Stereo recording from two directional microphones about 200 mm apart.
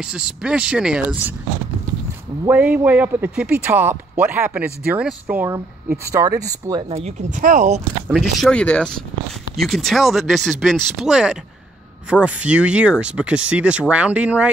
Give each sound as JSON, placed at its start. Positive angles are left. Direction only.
{"t": 0.0, "sound": "speech", "side_deg": -5}
{"t": 2.4, "sound": "speech", "side_deg": -5}
{"t": 6.9, "sound": "speech", "side_deg": -35}
{"t": 8.1, "sound": "speech", "side_deg": 5}